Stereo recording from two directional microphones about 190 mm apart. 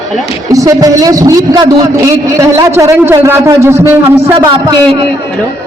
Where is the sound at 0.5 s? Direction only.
20° right (ahead or behind).